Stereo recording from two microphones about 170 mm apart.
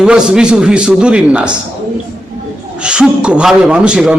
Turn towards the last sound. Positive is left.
turn(degrees=-5)  # may be behind; listen again after turning